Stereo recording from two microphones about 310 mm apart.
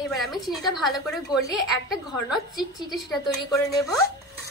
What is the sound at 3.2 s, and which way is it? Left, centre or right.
Speech, centre.